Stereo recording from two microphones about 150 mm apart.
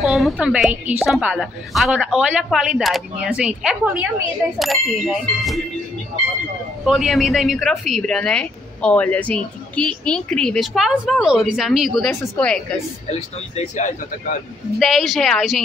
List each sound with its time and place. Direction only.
0.0 s speech: centre (ahead or behind)
6.8 s speech: centre (ahead or behind)
13.6 s speech: 55° left (ahead or behind)
14.8 s speech: centre (ahead or behind)